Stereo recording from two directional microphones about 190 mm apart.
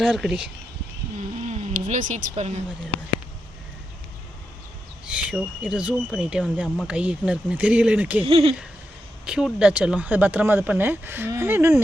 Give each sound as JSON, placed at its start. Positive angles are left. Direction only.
{"t": 0.0, "sound": "speech", "side_deg": 0}
{"t": 1.5, "sound": "speech", "side_deg": -40}
{"t": 5.0, "sound": "speech", "side_deg": -5}
{"t": 8.2, "sound": "speech", "side_deg": -30}
{"t": 9.2, "sound": "speech", "side_deg": -5}